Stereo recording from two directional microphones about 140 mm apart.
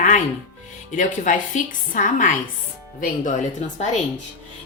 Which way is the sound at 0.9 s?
60° left (ahead or behind).